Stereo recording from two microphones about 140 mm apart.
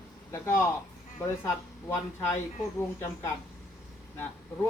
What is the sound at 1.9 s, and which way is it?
Speech, 15° left (ahead or behind).